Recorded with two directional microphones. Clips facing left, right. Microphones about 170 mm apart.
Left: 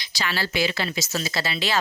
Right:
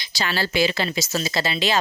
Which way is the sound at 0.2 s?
30° right (ahead or behind).